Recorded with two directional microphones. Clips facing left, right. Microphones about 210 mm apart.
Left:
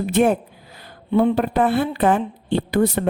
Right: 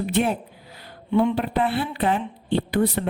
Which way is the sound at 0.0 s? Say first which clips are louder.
Left 5 dB; 45° left (ahead or behind).